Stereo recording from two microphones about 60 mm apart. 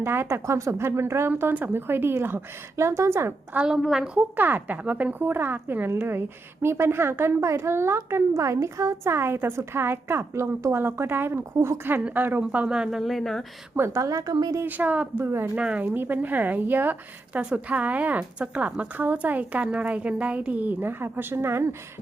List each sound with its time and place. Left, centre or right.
0.0 s a woman's voice: right
0.4 s a woman's voice: right
1.5 s a woman's voice: right
2.7 s a woman's voice: right
3.7 s speech: centre
4.2 s a woman's voice: right
12.4 s speech: centre
13.0 s speech: centre
13.7 s a woman's voice: right
14.0 s a woman's voice: right
14.7 s speech: right
15.2 s a woman's voice: right
15.5 s speech: centre
15.9 s speech: right